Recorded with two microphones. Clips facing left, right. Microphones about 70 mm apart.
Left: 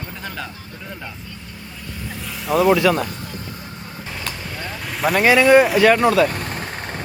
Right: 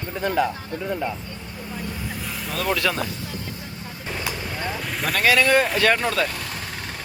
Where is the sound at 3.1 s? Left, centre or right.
Left.